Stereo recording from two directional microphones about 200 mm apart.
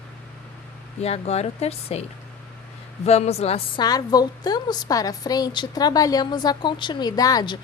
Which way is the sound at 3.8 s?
20° left (ahead or behind).